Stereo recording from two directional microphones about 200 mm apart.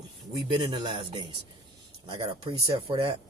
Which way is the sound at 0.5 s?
25° right (ahead or behind).